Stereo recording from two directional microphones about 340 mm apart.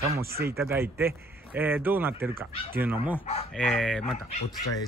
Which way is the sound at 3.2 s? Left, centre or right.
Centre.